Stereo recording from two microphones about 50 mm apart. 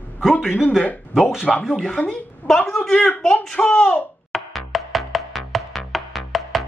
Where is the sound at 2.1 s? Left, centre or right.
Centre.